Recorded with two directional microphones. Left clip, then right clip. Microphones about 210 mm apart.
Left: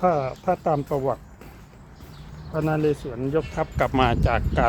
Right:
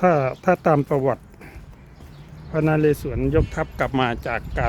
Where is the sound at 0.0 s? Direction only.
45° right (ahead or behind).